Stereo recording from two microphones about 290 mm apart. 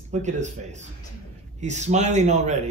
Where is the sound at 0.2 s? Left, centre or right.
Right.